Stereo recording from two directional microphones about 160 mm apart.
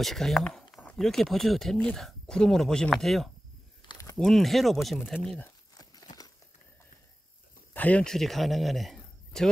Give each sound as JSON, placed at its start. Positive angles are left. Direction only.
{"t": 0.0, "sound": "speech", "side_deg": 0}
{"t": 3.8, "sound": "a sound", "side_deg": 25}
{"t": 4.2, "sound": "speech", "side_deg": 0}
{"t": 7.7, "sound": "speech", "side_deg": 10}